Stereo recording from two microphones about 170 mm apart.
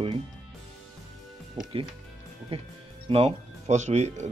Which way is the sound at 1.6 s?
25° right (ahead or behind).